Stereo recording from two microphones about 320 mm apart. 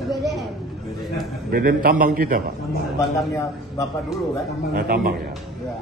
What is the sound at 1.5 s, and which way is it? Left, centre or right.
Speech, right.